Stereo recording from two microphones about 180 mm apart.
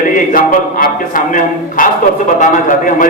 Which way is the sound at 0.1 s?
50° left (ahead or behind).